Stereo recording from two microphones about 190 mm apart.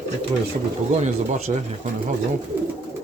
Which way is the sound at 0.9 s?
35° right (ahead or behind).